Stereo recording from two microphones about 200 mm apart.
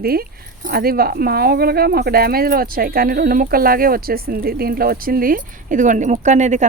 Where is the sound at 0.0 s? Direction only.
50° right (ahead or behind).